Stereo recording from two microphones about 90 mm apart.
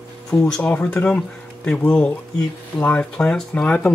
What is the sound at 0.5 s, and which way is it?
Speech, 15° left (ahead or behind).